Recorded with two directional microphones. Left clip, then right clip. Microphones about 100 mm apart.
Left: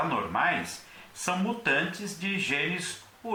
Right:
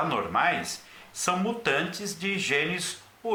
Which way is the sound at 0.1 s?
35° right (ahead or behind).